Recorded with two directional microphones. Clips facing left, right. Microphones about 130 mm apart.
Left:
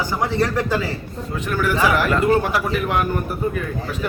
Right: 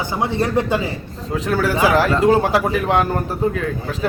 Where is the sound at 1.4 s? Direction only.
90° right.